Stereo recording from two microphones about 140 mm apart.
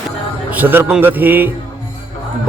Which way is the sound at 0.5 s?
15° right (ahead or behind).